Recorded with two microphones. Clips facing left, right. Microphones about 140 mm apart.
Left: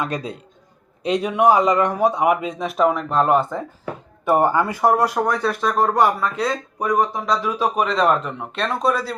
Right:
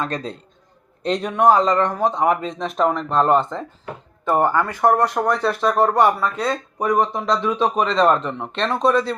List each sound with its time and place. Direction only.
0.0 s speech: 10° left (ahead or behind)